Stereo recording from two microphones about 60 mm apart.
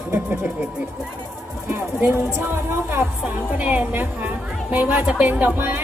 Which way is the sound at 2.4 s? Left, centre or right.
Right.